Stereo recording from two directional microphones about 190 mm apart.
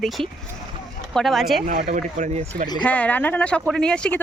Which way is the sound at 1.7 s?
45° right (ahead or behind).